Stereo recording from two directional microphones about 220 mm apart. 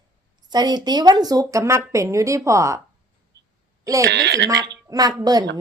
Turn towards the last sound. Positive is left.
turn(degrees=-15)  # may be behind; listen again after turning